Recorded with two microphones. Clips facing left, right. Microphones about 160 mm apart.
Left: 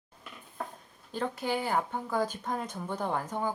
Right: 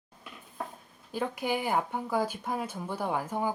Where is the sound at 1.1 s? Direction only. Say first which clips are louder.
Right 1 dB; 10° right (ahead or behind).